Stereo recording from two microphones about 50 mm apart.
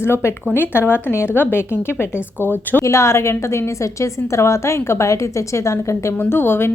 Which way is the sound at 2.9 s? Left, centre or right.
Left.